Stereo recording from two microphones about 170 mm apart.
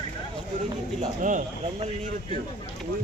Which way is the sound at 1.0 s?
50° right (ahead or behind).